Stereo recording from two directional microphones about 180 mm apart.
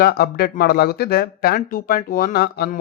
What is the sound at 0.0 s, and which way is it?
Speech, 60° left (ahead or behind).